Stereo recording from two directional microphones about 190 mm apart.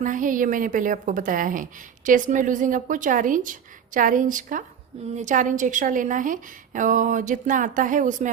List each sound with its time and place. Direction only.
0.0 s a woman's voice: 45° right (ahead or behind)